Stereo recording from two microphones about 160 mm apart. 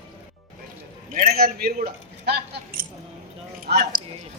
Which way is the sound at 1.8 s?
90° right.